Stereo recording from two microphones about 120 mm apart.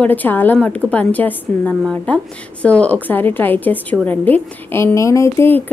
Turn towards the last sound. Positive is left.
turn(degrees=20)  # may be behind; listen again after turning